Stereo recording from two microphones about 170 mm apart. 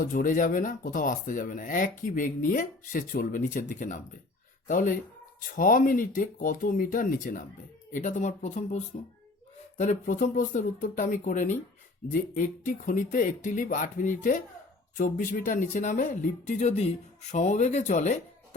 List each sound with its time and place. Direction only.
0.0 s speech: 50° left (ahead or behind)